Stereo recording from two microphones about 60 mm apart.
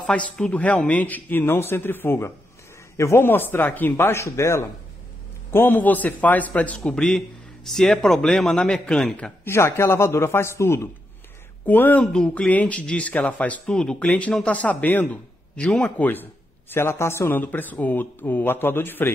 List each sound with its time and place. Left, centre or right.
0.0 s speech: centre
1.4 s speech: left
3.9 s a man's voice: left
5.5 s speech: left; by 9.1 s centre
9.4 s a man's voice: left
11.6 s speech: left
12.1 s speech: centre
12.4 s speech: left
14.0 s speech: left
15.5 s speech: centre
16.0 s a man's voice: left
17.3 s speech: left